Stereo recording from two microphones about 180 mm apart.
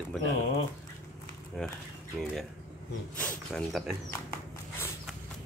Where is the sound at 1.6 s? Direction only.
5° left (ahead or behind).